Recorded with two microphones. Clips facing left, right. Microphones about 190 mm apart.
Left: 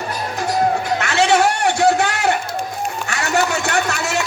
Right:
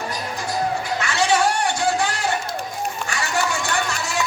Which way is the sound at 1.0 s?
65° left (ahead or behind).